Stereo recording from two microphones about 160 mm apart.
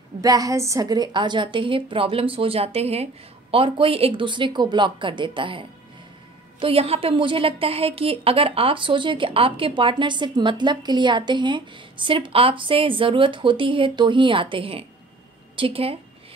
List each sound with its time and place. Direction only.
0.2 s a woman's voice: 20° right (ahead or behind)